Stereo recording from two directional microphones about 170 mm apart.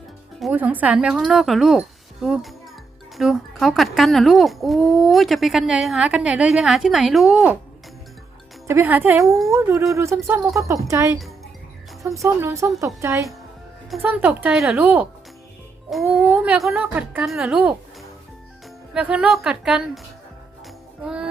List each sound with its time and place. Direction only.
0.5 s speech: 10° right (ahead or behind)
8.6 s a woman's voice: 15° right (ahead or behind)
18.9 s speech: 5° right (ahead or behind)
21.0 s speech: 5° right (ahead or behind)